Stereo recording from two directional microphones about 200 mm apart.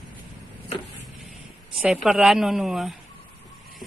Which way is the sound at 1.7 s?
5° right (ahead or behind).